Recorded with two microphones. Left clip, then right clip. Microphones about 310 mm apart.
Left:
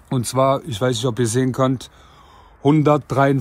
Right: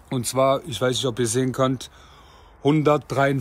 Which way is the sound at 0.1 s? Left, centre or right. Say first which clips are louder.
Left 2 dB; centre.